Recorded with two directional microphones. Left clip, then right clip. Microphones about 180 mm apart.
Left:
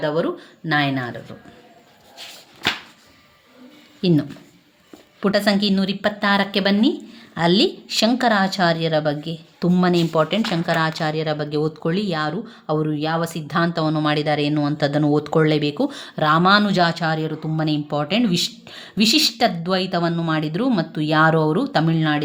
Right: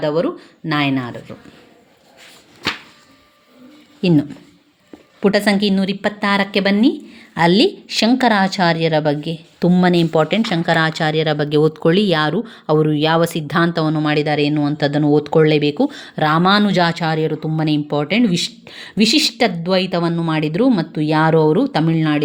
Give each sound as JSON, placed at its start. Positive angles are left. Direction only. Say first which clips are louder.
{"t": 0.0, "sound": "a woman's voice", "louder": "right 3 dB", "side_deg": -20}
{"t": 4.0, "sound": "a woman's voice", "louder": "right 4 dB", "side_deg": -10}
{"t": 13.7, "sound": "speech", "louder": "right 2 dB", "side_deg": -20}